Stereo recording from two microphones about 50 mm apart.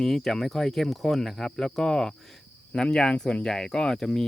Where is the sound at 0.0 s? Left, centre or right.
Centre.